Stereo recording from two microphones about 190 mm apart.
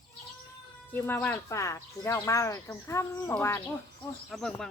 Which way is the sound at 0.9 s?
10° left (ahead or behind).